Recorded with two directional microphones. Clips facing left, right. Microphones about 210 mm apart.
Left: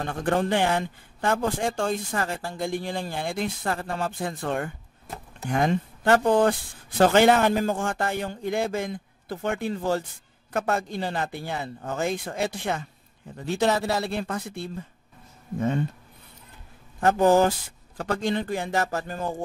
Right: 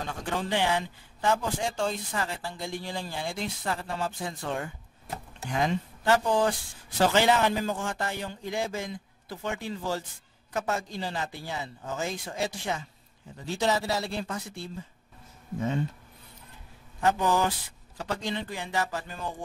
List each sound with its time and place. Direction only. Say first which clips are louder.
0.0 s a man's voice: left 7 dB; 55° left (ahead or behind)
17.0 s speech: left 6 dB; 50° left (ahead or behind)